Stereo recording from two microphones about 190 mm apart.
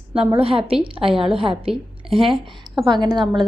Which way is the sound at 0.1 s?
30° right (ahead or behind).